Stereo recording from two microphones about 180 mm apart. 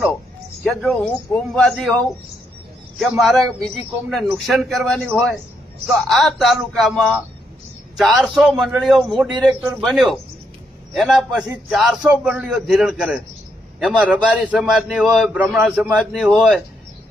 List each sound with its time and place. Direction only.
0.6 s a man's voice: centre (ahead or behind)
3.0 s a man's voice: centre (ahead or behind)